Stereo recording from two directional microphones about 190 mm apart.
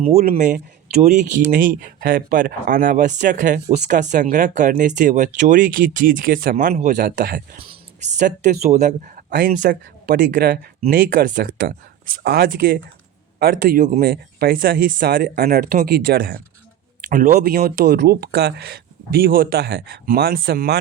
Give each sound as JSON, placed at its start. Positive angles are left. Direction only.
{"t": 0.2, "sound": "speech", "side_deg": -45}
{"t": 7.6, "sound": "speech", "side_deg": -35}